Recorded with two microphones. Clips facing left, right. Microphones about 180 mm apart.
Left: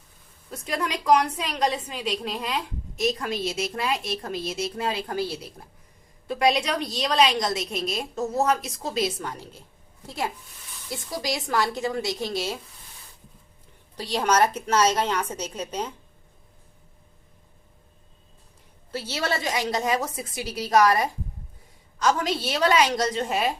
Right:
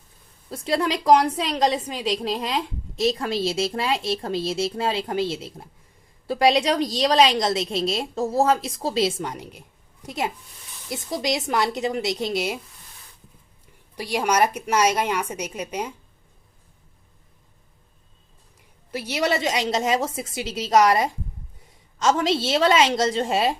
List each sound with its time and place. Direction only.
0.5 s a woman's voice: 30° right (ahead or behind)
6.2 s a woman's voice: 35° right (ahead or behind); by 12.5 s 20° right (ahead or behind)
13.9 s a woman's voice: 10° right (ahead or behind)
18.9 s a woman's voice: 15° right (ahead or behind)